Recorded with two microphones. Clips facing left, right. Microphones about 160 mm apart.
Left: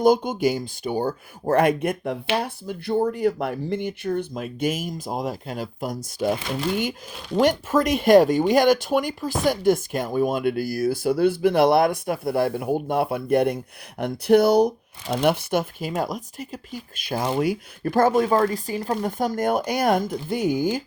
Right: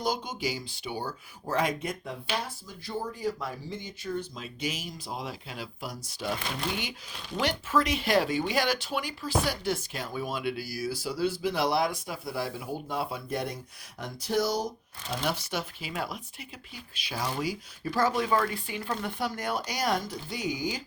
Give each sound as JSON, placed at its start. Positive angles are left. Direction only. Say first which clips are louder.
{"t": 0.0, "sound": "speech", "louder": "left 13 dB", "side_deg": 50}
{"t": 7.3, "sound": "speech", "louder": "left 8 dB", "side_deg": 45}